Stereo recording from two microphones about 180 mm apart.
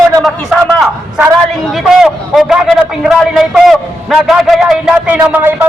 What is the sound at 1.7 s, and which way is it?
A man's voice, centre (ahead or behind).